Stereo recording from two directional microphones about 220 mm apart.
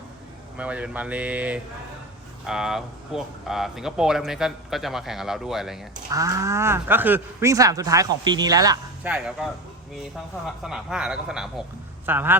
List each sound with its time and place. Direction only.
0.5 s speech: 5° right (ahead or behind)
6.1 s speech: 15° right (ahead or behind)
9.0 s speech: 5° right (ahead or behind)